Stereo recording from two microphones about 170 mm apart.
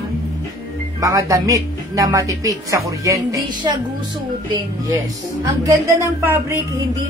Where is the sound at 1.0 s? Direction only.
20° right (ahead or behind).